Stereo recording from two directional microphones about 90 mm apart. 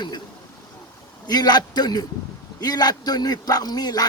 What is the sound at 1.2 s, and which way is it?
A man's voice, 50° left (ahead or behind).